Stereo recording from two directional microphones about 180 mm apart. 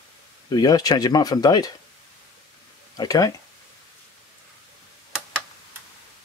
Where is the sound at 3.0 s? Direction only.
20° left (ahead or behind).